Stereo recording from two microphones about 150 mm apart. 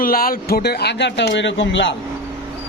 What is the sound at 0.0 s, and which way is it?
Speech, 75° left (ahead or behind).